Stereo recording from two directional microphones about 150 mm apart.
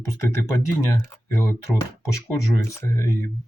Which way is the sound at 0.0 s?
20° left (ahead or behind).